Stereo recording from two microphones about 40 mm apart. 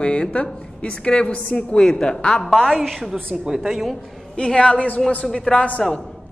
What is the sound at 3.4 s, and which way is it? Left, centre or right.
Speech, centre.